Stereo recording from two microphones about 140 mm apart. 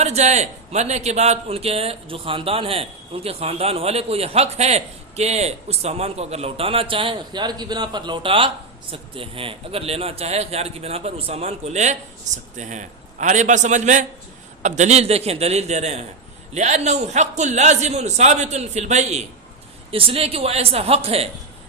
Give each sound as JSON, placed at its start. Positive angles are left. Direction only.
{"t": 0.0, "sound": "a man's voice", "side_deg": -50}
{"t": 19.9, "sound": "a man's voice", "side_deg": -40}